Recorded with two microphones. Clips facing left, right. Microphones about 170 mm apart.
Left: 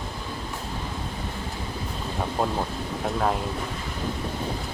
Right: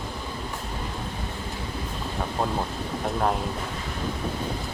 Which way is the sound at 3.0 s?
Centre (ahead or behind).